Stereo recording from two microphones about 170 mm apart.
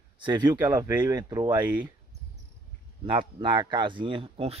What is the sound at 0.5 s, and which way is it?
Speech, 15° right (ahead or behind).